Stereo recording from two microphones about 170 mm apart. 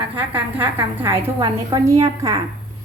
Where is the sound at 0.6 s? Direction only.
15° right (ahead or behind).